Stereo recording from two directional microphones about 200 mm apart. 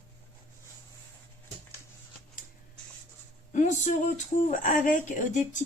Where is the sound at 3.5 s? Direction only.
35° left (ahead or behind).